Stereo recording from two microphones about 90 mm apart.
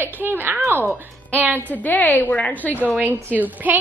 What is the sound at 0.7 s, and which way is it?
Speech, 25° right (ahead or behind).